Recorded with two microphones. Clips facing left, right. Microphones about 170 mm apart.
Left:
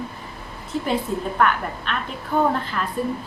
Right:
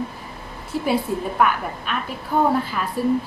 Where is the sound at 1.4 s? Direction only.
5° right (ahead or behind).